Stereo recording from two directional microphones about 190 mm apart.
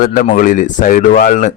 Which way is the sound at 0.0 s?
50° left (ahead or behind).